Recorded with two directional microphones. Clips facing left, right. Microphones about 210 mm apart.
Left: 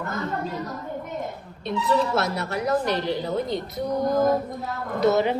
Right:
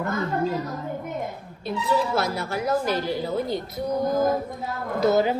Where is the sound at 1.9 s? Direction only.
Centre (ahead or behind).